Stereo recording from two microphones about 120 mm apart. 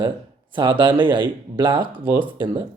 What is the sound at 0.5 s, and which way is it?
Speech, 40° right (ahead or behind).